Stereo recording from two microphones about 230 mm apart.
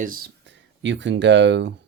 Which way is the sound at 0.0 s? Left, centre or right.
Right.